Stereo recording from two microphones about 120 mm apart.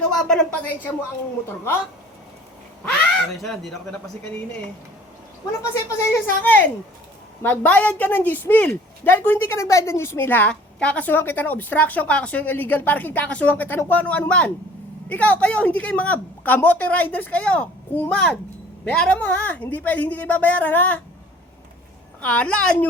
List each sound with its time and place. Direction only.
0.0 s a woman's voice: 5° left (ahead or behind)
3.3 s speech: centre (ahead or behind)
5.9 s a woman's voice: 20° left (ahead or behind)
22.2 s a woman's voice: 10° left (ahead or behind)